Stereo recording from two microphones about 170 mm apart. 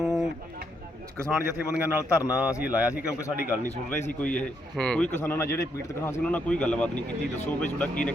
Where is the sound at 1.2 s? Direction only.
10° right (ahead or behind).